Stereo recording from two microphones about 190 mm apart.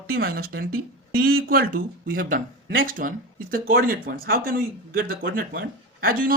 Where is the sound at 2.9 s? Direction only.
45° right (ahead or behind).